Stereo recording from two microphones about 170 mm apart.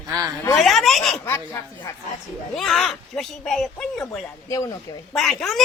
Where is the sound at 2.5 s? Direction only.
Centre (ahead or behind).